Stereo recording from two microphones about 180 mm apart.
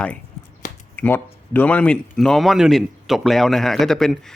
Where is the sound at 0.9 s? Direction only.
10° left (ahead or behind).